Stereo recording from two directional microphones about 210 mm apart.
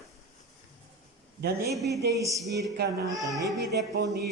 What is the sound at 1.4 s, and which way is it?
Speech, 50° right (ahead or behind).